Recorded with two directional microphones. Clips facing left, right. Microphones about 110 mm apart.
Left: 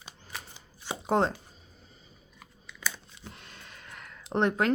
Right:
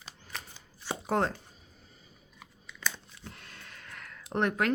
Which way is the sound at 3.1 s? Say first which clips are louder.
Left 1 dB; 20° left (ahead or behind).